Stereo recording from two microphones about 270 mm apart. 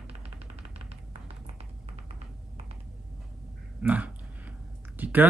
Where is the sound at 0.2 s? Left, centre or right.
Right.